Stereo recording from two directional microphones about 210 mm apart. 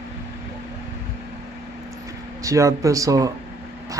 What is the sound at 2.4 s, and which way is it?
Speech, 15° right (ahead or behind).